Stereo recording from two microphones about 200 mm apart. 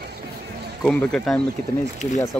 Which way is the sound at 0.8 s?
5° left (ahead or behind).